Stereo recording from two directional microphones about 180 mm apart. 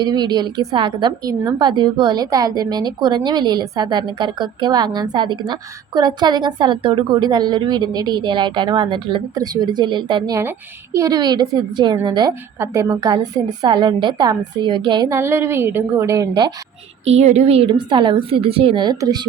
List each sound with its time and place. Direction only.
0.0 s a woman's voice: 25° right (ahead or behind)
17.1 s a woman's voice: 40° right (ahead or behind); by 19.3 s 20° right (ahead or behind)